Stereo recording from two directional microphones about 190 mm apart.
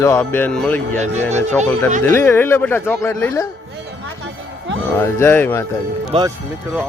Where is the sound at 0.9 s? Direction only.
35° right (ahead or behind).